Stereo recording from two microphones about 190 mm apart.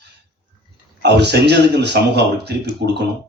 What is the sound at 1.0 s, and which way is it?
Speech, 65° right (ahead or behind).